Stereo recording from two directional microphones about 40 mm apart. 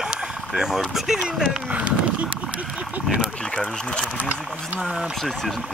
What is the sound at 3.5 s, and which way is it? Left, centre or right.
Speech, left.